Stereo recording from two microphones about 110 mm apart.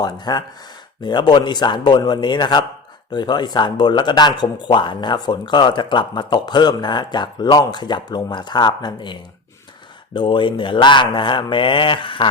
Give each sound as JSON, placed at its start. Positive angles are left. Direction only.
{"t": 0.0, "sound": "speech", "side_deg": 40}
{"t": 10.2, "sound": "speech", "side_deg": 45}